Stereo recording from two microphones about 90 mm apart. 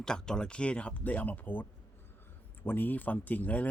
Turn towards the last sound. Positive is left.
turn(degrees=15)  # may be behind; listen again after turning